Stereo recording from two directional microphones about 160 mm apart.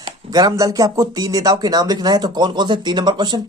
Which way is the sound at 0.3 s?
25° right (ahead or behind).